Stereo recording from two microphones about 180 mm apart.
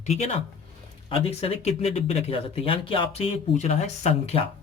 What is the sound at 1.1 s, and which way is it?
Speech, 35° left (ahead or behind).